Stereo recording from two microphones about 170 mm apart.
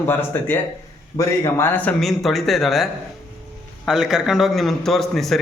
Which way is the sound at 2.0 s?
Centre (ahead or behind).